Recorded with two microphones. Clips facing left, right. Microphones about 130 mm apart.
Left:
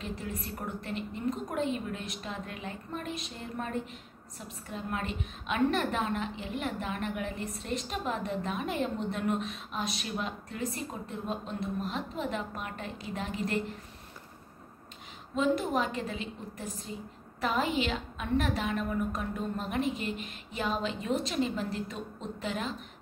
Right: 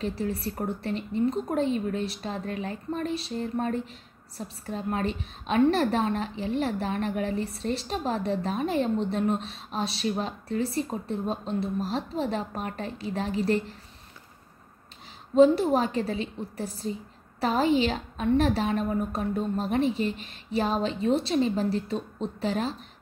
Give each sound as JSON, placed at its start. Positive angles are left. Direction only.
{"t": 0.0, "sound": "a woman's voice", "side_deg": -35}
{"t": 15.3, "sound": "a woman's voice", "side_deg": -30}